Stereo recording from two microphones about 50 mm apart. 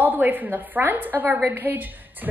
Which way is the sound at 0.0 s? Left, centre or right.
Right.